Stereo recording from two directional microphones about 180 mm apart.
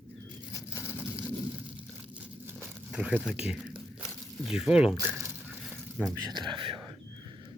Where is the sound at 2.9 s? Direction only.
5° right (ahead or behind).